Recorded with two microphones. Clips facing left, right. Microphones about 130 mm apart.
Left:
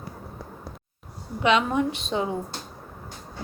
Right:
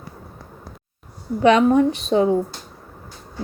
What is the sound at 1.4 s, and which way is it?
Speech, 40° right (ahead or behind).